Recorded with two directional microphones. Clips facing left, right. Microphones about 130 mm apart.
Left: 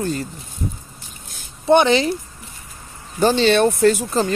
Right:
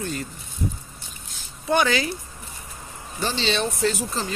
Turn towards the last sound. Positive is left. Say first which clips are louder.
# left 9 dB
turn(degrees=50)  # may be behind; listen again after turning